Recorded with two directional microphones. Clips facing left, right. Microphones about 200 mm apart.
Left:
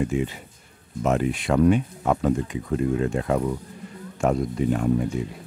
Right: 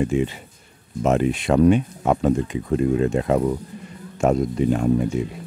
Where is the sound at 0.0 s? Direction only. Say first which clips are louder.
Right 3 dB; 25° right (ahead or behind).